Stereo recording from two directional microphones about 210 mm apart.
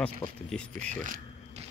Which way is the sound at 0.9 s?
40° right (ahead or behind).